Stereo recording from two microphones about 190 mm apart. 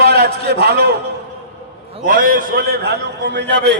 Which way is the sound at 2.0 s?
50° right (ahead or behind).